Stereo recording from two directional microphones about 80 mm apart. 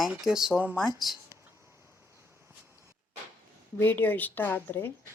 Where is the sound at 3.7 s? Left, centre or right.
Left.